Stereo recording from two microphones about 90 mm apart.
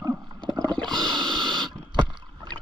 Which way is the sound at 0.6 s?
10° left (ahead or behind).